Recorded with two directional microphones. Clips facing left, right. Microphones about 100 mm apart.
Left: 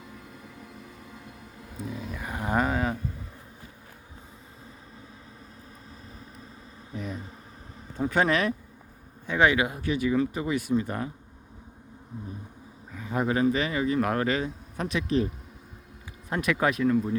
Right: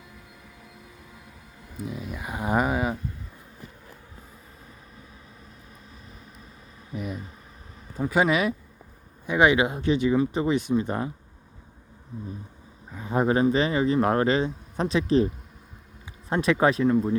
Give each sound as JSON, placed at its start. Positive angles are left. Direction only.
{"t": 2.1, "sound": "speech", "side_deg": -15}
{"t": 6.9, "sound": "speech", "side_deg": -10}
{"t": 12.9, "sound": "speech", "side_deg": -30}
{"t": 16.3, "sound": "speech", "side_deg": -30}